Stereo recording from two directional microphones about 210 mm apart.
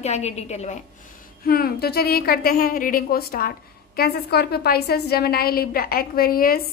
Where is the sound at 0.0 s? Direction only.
30° left (ahead or behind).